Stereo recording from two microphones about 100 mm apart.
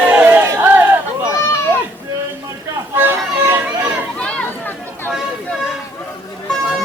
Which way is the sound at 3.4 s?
20° right (ahead or behind).